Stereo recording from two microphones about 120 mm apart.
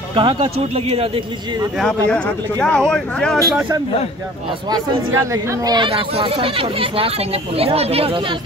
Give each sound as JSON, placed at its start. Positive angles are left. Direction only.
{"t": 0.1, "sound": "speech", "side_deg": -45}
{"t": 1.8, "sound": "speech", "side_deg": 10}
{"t": 5.1, "sound": "speech", "side_deg": -25}
{"t": 5.9, "sound": "speech", "side_deg": -50}